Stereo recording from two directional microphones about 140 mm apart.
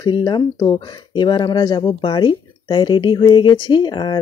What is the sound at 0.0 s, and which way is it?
Speech, 30° left (ahead or behind).